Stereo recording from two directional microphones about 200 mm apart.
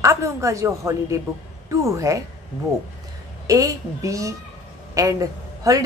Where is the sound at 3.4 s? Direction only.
15° right (ahead or behind).